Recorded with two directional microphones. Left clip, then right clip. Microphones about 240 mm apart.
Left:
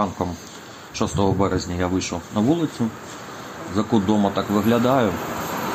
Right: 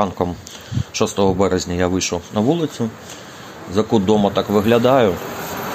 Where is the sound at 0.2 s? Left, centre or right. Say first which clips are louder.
Right 5 dB; right.